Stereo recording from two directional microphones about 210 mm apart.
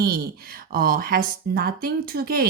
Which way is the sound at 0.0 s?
45° right (ahead or behind).